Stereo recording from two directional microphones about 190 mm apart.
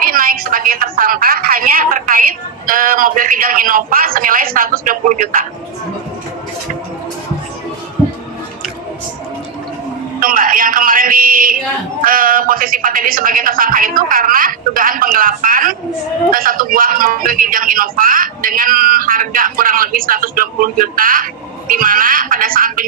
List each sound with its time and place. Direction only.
0.0 s a sound: 50° right (ahead or behind)
2.6 s a man's voice: 45° right (ahead or behind)
10.2 s a man's voice: 45° right (ahead or behind)